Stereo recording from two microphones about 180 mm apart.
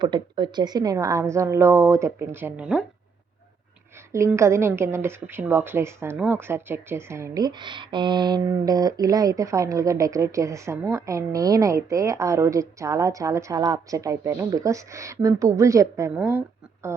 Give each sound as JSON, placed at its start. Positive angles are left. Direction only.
{"t": 0.0, "sound": "a woman's voice", "side_deg": -25}
{"t": 4.1, "sound": "a woman's voice", "side_deg": -15}